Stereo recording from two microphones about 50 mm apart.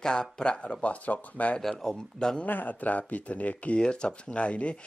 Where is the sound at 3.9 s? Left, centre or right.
Centre.